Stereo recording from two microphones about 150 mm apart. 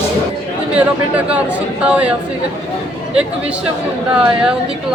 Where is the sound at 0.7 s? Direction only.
5° right (ahead or behind).